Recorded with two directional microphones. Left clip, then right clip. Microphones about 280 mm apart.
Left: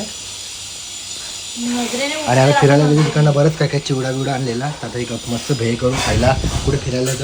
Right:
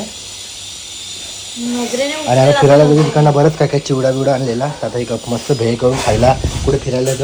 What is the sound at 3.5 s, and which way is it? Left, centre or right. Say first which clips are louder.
Speech: right 4 dB; right.